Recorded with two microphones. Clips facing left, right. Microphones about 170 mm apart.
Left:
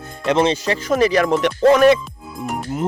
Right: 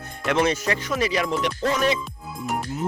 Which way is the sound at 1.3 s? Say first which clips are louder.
Left 10 dB; 60° left (ahead or behind).